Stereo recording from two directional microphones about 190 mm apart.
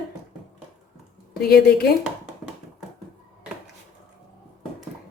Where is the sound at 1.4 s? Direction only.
55° left (ahead or behind).